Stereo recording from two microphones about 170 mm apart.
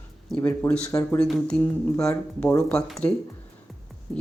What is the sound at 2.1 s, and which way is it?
Speech, 15° left (ahead or behind).